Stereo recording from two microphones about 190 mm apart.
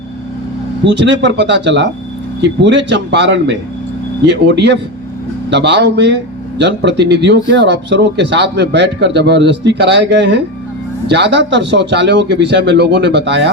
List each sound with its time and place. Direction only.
0.9 s speech: 70° right (ahead or behind)